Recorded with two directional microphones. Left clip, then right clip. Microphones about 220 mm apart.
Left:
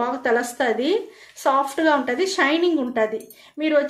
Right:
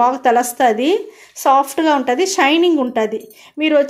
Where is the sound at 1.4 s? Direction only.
30° right (ahead or behind).